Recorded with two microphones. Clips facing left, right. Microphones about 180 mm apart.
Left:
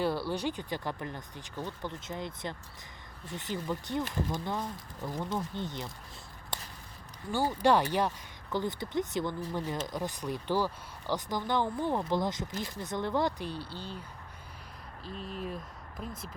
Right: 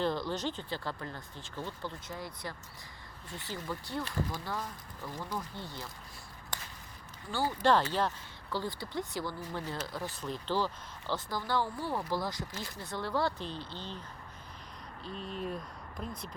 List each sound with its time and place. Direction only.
0.0 s speech: 10° left (ahead or behind)
7.3 s speech: 15° left (ahead or behind)
15.0 s speech: centre (ahead or behind)